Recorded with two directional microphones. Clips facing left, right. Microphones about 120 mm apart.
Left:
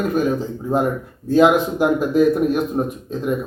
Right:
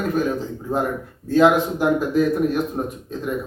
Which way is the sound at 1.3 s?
15° left (ahead or behind).